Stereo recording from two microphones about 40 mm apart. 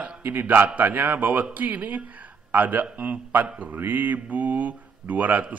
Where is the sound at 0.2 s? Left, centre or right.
Right.